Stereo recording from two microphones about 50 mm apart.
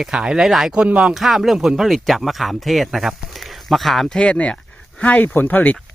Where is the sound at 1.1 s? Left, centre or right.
Centre.